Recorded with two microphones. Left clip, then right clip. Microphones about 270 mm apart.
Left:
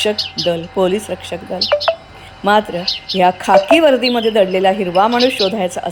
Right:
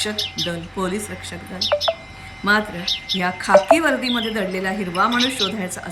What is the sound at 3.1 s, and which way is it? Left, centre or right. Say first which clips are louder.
A woman's voice: left 5 dB; centre.